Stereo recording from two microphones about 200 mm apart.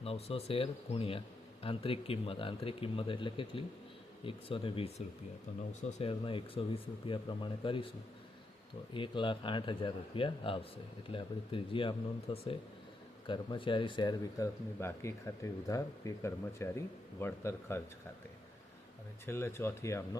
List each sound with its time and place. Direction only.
0.0 s speech: 30° left (ahead or behind); by 17.8 s 10° left (ahead or behind)
19.2 s speech: 10° left (ahead or behind)